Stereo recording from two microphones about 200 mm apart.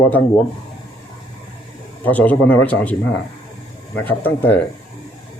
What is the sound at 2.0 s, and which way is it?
Speech, 10° left (ahead or behind).